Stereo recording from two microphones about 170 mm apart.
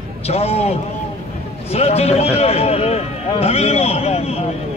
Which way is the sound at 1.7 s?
35° left (ahead or behind).